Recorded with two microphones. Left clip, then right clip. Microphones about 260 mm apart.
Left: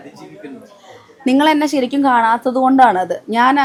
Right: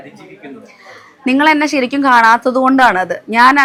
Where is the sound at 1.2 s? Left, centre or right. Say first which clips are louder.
Right 2 dB; centre.